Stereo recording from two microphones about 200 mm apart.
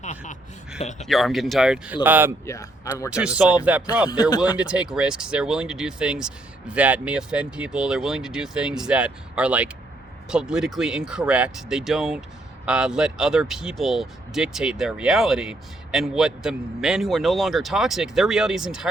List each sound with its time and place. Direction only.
0.0 s speech: 40° left (ahead or behind)
1.0 s speech: centre (ahead or behind)
2.5 s speech: 15° left (ahead or behind)
3.1 s speech: 5° right (ahead or behind)
4.0 s speech: 20° left (ahead or behind)
4.5 s speech: 5° right (ahead or behind)